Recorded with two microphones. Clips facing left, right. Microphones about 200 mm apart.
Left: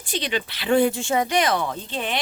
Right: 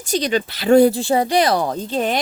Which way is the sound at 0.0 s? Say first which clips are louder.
Right 7 dB; 40° right (ahead or behind).